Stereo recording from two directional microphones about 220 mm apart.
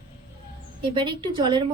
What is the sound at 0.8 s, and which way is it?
Speech, 20° right (ahead or behind).